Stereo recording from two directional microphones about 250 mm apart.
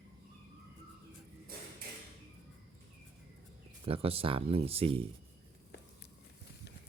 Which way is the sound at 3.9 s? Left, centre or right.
Right.